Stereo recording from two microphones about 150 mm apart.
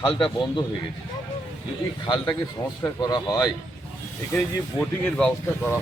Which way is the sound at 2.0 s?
30° left (ahead or behind).